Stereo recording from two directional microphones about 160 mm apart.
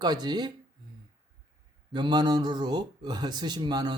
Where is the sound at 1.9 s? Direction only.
25° right (ahead or behind).